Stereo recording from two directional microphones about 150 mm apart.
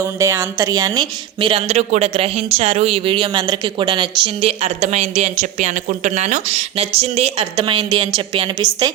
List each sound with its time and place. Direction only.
0.0 s speech: 20° right (ahead or behind)
1.4 s speech: 35° right (ahead or behind)